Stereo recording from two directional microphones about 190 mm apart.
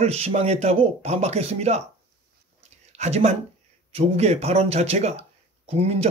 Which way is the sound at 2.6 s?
35° right (ahead or behind).